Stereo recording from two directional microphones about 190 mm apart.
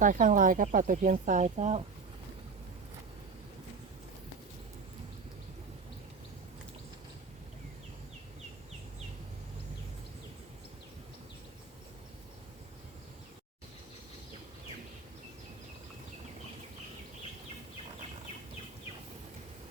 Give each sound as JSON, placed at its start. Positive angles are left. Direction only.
{"t": 0.0, "sound": "speech", "side_deg": -45}